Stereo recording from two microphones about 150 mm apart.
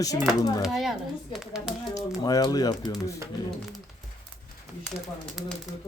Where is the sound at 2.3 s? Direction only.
25° left (ahead or behind).